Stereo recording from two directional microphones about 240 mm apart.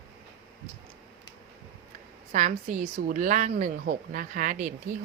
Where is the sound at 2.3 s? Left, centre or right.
Right.